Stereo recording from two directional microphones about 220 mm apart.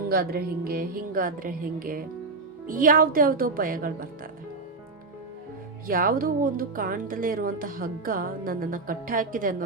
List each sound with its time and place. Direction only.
0.1 s speech: 45° right (ahead or behind)
5.9 s speech: 40° right (ahead or behind)